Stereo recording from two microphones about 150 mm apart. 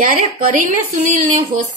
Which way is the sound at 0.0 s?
65° right (ahead or behind).